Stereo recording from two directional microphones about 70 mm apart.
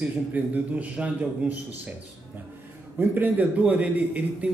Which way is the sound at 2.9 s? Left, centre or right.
Right.